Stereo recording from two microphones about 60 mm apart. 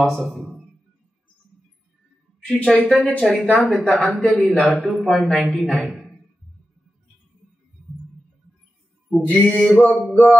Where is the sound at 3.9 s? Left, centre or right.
Centre.